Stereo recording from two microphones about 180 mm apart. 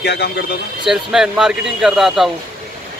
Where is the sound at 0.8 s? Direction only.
5° right (ahead or behind).